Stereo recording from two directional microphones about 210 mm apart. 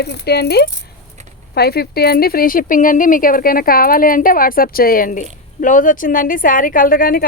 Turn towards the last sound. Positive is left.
turn(degrees=40)  # may be behind; listen again after turning